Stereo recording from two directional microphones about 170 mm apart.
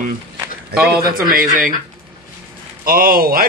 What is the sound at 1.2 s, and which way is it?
Speech, 55° right (ahead or behind).